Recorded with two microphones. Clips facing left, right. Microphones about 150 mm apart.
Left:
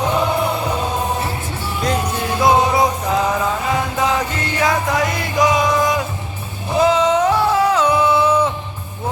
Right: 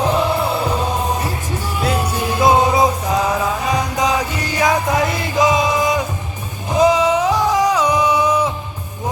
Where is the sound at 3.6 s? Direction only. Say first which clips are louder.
Right 1 dB; 15° right (ahead or behind).